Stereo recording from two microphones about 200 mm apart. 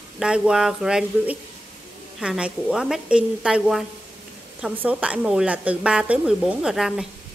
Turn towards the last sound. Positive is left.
turn(degrees=-5)  # may be behind; listen again after turning